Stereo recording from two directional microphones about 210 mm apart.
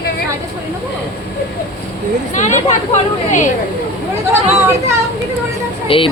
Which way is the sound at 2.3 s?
35° left (ahead or behind).